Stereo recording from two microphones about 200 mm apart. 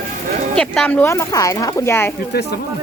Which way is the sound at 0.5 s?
5° left (ahead or behind).